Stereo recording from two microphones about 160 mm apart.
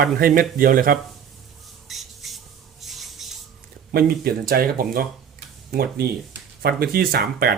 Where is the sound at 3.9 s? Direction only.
70° right (ahead or behind).